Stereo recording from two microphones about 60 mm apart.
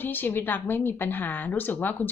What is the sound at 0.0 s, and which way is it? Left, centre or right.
Speech, left.